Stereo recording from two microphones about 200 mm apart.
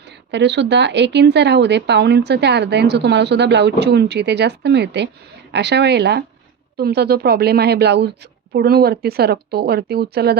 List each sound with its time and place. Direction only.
0.3 s a woman's voice: 60° right (ahead or behind)